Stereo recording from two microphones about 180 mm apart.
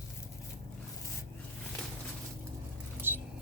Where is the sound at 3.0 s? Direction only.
10° right (ahead or behind).